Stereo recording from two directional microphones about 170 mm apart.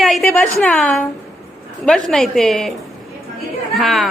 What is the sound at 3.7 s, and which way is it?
Chuckle, centre (ahead or behind).